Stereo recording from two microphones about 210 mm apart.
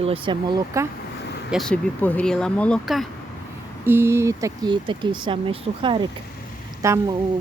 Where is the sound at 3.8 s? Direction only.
10° right (ahead or behind).